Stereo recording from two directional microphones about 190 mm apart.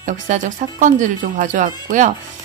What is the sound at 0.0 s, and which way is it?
Speech, 45° right (ahead or behind).